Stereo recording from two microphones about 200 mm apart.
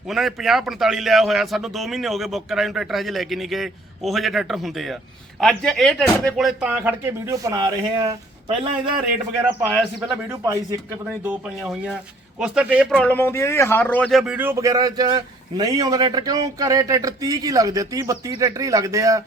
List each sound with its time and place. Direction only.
0.1 s a man's voice: centre (ahead or behind); by 9.0 s 25° right (ahead or behind)
10.2 s a man's voice: 15° right (ahead or behind)
11.1 s a man's voice: 5° right (ahead or behind)
12.9 s a man's voice: 5° left (ahead or behind); by 19.2 s 15° right (ahead or behind)